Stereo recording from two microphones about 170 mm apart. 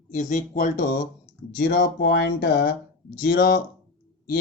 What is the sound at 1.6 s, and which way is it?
Speech, 80° left.